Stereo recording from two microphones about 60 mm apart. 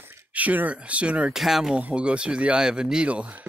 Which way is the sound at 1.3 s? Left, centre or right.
Centre.